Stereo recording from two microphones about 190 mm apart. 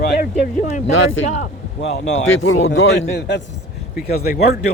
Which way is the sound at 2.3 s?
90° left.